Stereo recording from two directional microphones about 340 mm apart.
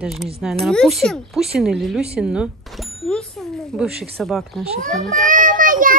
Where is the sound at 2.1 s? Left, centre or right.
Centre.